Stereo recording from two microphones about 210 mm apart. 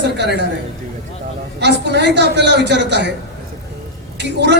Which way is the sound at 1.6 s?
55° right (ahead or behind).